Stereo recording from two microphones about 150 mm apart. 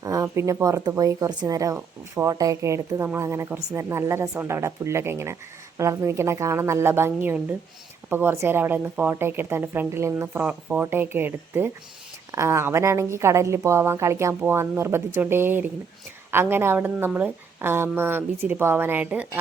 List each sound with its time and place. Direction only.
0.0 s a woman's voice: 20° right (ahead or behind)